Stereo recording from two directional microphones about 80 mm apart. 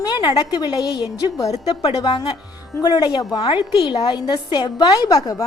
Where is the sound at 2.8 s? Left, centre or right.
Left.